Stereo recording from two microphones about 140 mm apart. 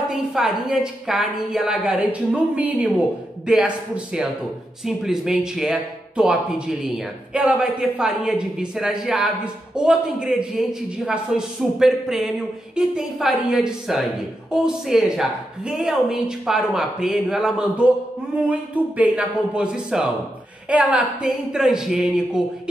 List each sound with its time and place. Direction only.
0.1 s speech: centre (ahead or behind)
7.3 s speech: 5° right (ahead or behind)